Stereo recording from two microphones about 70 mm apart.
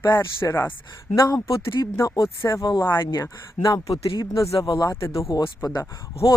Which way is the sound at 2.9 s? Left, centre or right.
Left.